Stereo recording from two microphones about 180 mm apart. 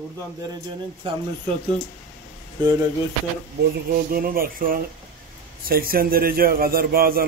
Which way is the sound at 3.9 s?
55° right (ahead or behind).